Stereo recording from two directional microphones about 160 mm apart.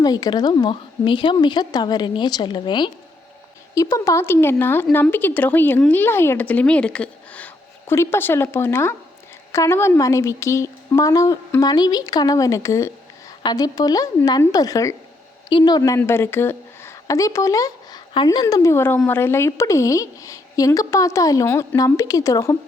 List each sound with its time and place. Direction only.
0.0 s a woman's voice: 25° left (ahead or behind)